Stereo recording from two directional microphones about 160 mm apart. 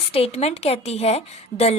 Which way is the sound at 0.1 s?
40° left (ahead or behind).